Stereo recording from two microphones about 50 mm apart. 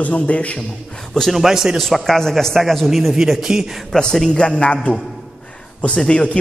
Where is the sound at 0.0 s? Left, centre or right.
Left.